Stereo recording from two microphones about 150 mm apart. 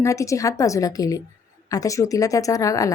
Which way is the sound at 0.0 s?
20° left (ahead or behind).